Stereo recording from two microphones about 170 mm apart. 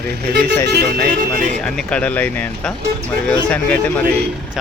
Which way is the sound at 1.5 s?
5° left (ahead or behind).